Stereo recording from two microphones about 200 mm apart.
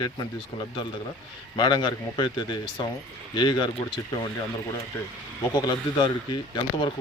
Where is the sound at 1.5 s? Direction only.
20° left (ahead or behind).